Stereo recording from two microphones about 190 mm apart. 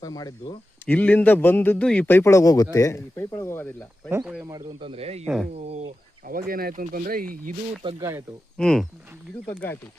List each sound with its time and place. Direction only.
0.0 s speech: 20° left (ahead or behind)
0.9 s a man's voice: 10° left (ahead or behind)
4.1 s speech: 5° right (ahead or behind)
4.4 s speech: 25° right (ahead or behind)
5.2 s speech: 5° right (ahead or behind)
5.5 s speech: 35° right (ahead or behind)
6.5 s speech: 50° right (ahead or behind)
7.8 s speech: 25° right (ahead or behind)
8.5 s a man's voice: 5° left (ahead or behind)